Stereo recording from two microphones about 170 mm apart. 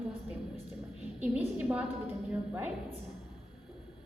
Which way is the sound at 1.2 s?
10° right (ahead or behind).